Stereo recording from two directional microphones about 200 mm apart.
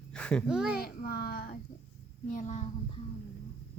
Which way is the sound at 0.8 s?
50° left (ahead or behind).